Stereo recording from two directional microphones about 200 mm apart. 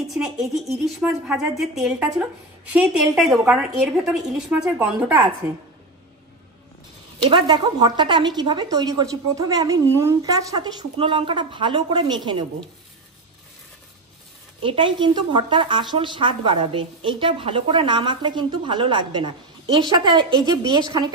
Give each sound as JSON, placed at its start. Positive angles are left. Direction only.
{"t": 0.1, "sound": "a woman's voice", "side_deg": 0}
{"t": 7.2, "sound": "a woman's voice", "side_deg": -20}
{"t": 14.6, "sound": "a woman's voice", "side_deg": -25}